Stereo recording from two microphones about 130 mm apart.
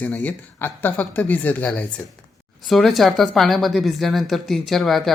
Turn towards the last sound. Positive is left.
turn(degrees=0)  # may be behind; listen again after turning